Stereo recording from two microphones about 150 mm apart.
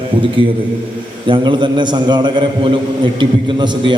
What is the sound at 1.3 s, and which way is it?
A man's voice, 35° right (ahead or behind).